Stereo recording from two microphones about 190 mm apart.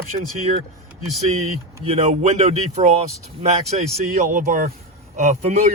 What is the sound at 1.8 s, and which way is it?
Speech, 35° right (ahead or behind).